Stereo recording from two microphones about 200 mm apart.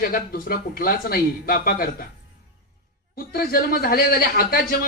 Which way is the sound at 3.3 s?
50° left (ahead or behind).